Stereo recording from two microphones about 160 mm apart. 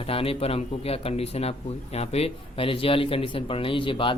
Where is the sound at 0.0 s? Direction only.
35° left (ahead or behind).